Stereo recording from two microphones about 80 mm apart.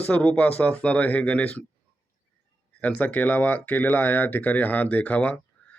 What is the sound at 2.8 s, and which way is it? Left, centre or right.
A man's voice, centre.